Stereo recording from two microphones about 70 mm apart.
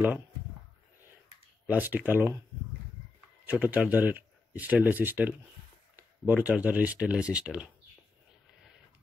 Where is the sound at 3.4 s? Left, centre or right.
Right.